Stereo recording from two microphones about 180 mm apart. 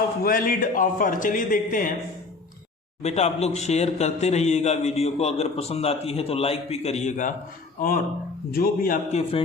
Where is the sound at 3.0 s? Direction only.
35° left (ahead or behind).